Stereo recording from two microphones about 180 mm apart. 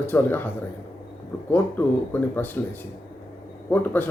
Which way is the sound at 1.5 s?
10° left (ahead or behind).